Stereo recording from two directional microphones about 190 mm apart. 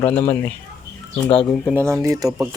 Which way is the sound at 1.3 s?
30° left (ahead or behind).